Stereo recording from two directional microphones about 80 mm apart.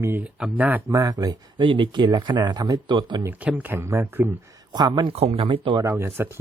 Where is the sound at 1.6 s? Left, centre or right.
Right.